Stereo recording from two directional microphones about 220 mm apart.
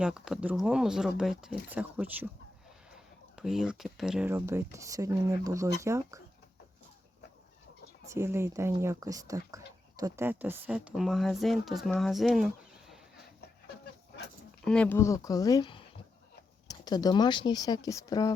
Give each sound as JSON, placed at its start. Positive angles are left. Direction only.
{"t": 0.0, "sound": "speech", "side_deg": -5}
{"t": 8.1, "sound": "speech", "side_deg": -10}
{"t": 14.6, "sound": "speech", "side_deg": 5}